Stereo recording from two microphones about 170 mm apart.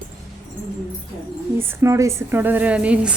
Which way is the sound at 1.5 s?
15° right (ahead or behind).